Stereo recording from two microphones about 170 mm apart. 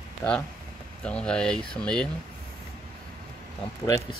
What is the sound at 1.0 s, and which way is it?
Speech, 5° left (ahead or behind).